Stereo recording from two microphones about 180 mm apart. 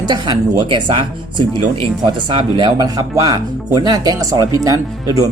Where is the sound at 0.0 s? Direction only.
25° right (ahead or behind).